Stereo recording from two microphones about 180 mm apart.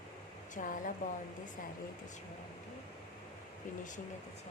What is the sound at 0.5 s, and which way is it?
Speech, 50° left (ahead or behind).